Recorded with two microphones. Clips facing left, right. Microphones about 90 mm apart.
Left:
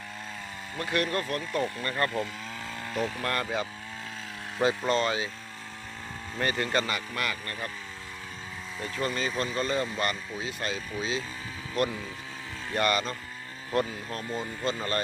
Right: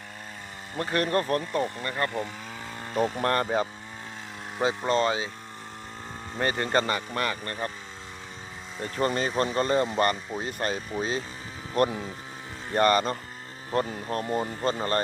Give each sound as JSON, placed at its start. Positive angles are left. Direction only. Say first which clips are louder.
{"t": 0.8, "sound": "speech", "louder": "right 3 dB", "side_deg": -35}
{"t": 1.6, "sound": "speech", "louder": "even", "side_deg": -20}
{"t": 3.2, "sound": "speech", "louder": "right 5 dB", "side_deg": -35}
{"t": 4.5, "sound": "speech", "louder": "right 1 dB", "side_deg": -20}
{"t": 6.3, "sound": "speech", "louder": "right 3 dB", "side_deg": -30}
{"t": 8.8, "sound": "speech", "louder": "right 4 dB", "side_deg": -45}
{"t": 13.7, "sound": "speech", "louder": "right 1 dB", "side_deg": -25}
{"t": 14.1, "sound": "speech", "louder": "right 6 dB", "side_deg": -45}